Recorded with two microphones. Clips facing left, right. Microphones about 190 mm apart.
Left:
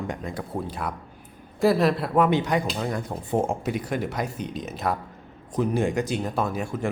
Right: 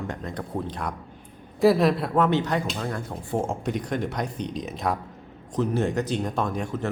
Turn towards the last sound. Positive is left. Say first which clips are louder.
# left 1 dB
turn(degrees=10)  # may be behind; listen again after turning